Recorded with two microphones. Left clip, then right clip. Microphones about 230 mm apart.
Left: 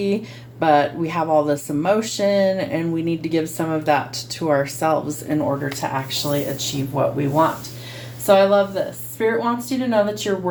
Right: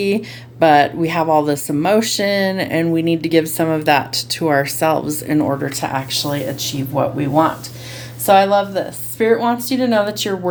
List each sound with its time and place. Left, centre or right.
0.0 s speech: right
5.9 s a woman's voice: right